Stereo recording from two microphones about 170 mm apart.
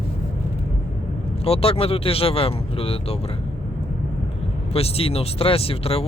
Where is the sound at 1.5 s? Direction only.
35° left (ahead or behind).